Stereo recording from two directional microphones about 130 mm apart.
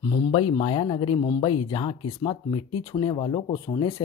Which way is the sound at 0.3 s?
45° left (ahead or behind).